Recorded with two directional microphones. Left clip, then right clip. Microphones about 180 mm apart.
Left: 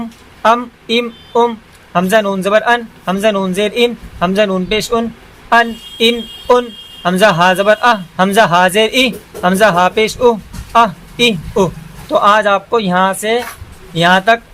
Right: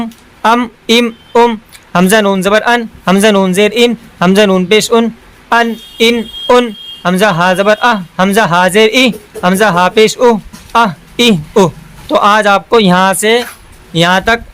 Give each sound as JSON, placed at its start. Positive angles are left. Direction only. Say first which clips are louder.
{"t": 0.0, "sound": "speech", "louder": "right 1 dB", "side_deg": -35}
{"t": 7.0, "sound": "speech", "louder": "even", "side_deg": -20}